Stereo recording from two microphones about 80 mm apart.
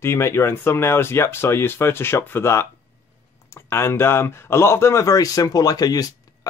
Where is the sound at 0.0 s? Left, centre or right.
Left.